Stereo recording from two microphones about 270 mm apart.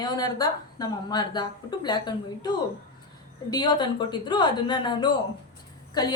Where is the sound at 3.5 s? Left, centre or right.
Centre.